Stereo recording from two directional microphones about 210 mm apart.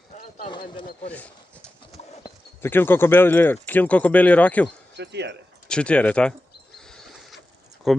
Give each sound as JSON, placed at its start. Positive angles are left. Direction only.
{"t": 0.5, "sound": "speech", "side_deg": 25}
{"t": 1.1, "sound": "a sound", "side_deg": 5}
{"t": 2.6, "sound": "speech", "side_deg": 10}
{"t": 4.9, "sound": "speech", "side_deg": -55}
{"t": 5.6, "sound": "speech", "side_deg": 5}
{"t": 6.7, "sound": "a sound", "side_deg": 0}
{"t": 7.9, "sound": "speech", "side_deg": 0}